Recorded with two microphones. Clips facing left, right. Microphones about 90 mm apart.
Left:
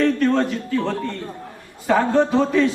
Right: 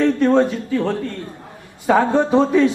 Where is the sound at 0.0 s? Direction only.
20° right (ahead or behind).